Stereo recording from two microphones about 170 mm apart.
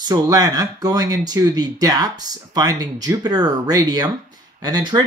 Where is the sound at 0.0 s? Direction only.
20° right (ahead or behind).